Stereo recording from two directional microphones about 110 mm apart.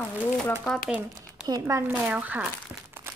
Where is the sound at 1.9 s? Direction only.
15° right (ahead or behind).